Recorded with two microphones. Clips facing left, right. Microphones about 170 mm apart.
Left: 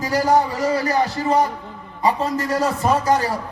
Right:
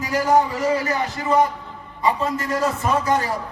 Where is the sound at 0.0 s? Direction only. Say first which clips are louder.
Left 1 dB; 35° left (ahead or behind).